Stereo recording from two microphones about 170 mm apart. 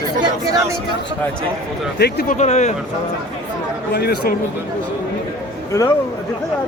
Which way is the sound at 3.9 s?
65° left (ahead or behind).